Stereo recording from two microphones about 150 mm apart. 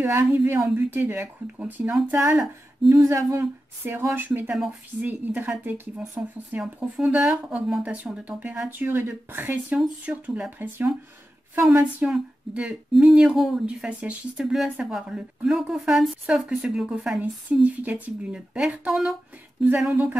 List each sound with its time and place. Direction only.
0.0 s speech: 15° right (ahead or behind)
2.9 s speech: 20° right (ahead or behind)